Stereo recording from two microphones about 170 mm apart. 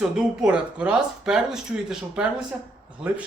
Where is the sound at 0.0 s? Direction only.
5° right (ahead or behind).